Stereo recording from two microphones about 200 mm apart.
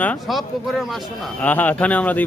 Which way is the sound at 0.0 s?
5° left (ahead or behind).